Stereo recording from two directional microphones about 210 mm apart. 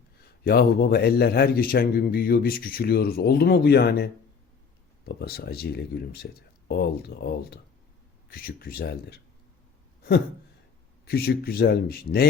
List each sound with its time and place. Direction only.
0.4 s a man's voice: 45° left (ahead or behind)
11.0 s a man's voice: 45° left (ahead or behind)